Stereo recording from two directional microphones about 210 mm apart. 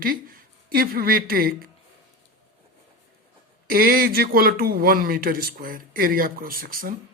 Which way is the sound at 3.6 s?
45° right (ahead or behind).